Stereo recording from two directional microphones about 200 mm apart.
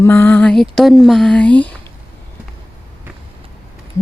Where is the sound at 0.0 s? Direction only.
10° left (ahead or behind).